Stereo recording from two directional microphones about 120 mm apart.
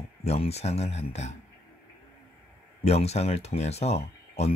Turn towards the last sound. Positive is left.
turn(degrees=60)  # may be behind; listen again after turning